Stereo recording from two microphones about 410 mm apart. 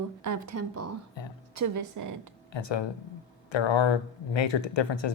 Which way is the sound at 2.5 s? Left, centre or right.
Left.